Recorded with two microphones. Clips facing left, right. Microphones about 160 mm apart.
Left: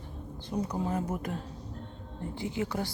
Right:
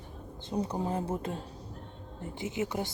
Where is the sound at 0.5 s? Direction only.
30° right (ahead or behind).